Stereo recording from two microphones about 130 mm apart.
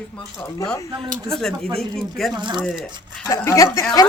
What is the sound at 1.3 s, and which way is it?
Speech, 5° left (ahead or behind).